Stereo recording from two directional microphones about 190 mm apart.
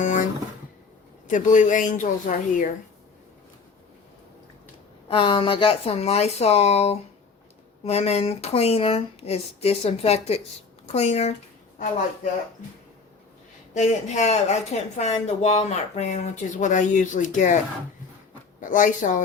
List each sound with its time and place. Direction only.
0.0 s a sound: 45° left (ahead or behind)
1.3 s a woman's voice: 40° left (ahead or behind)
5.0 s speech: 30° left (ahead or behind)
13.7 s speech: 40° left (ahead or behind)
18.6 s a woman's voice: 40° left (ahead or behind)